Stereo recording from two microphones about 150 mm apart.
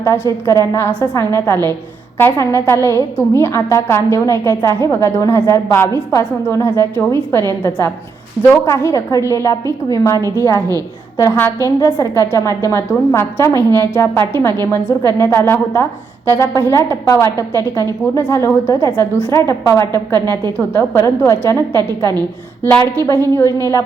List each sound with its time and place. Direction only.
0.0 s a woman's voice: 20° left (ahead or behind)
10.2 s a woman's voice: 20° right (ahead or behind)
11.8 s a woman's voice: 20° left (ahead or behind)
20.2 s a woman's voice: 30° right (ahead or behind)
20.6 s a woman's voice: 20° left (ahead or behind)
21.7 s a woman's voice: 25° right (ahead or behind)
22.6 s a woman's voice: 15° left (ahead or behind)